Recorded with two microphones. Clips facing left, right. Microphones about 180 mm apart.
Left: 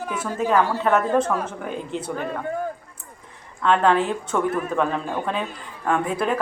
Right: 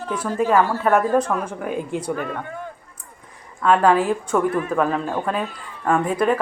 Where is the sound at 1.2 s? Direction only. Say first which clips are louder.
Even; 25° left (ahead or behind).